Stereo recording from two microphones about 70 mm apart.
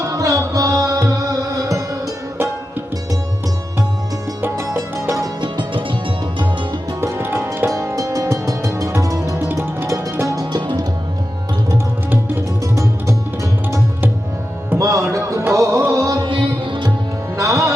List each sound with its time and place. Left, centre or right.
0.1 s music: right
4.4 s music: right
4.8 s music: right
5.2 s music: right
7.0 s music: right
7.7 s music: right
10.5 s music: right
12.6 s music: right
17.3 s music: right